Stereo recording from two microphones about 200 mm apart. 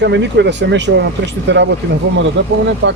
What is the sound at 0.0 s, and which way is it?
Speech, 60° right (ahead or behind).